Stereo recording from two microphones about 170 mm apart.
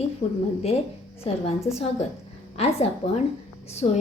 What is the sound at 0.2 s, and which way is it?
Speech, 45° left (ahead or behind).